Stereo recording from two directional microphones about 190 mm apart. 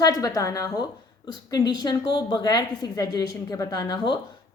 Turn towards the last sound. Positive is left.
turn(degrees=20)  # may be behind; listen again after turning